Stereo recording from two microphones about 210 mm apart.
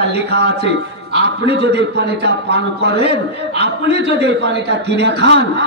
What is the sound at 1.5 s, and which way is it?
A man's voice, 50° right (ahead or behind).